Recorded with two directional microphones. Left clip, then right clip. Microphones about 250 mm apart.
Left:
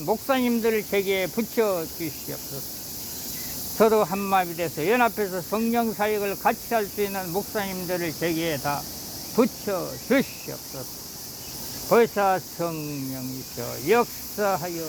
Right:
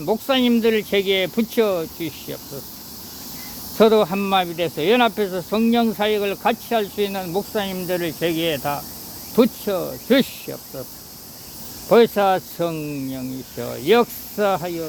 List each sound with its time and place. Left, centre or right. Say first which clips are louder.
0.0 s speech: right 4 dB; centre
3.8 s speech: right 5 dB; centre
11.9 s speech: right 5 dB; centre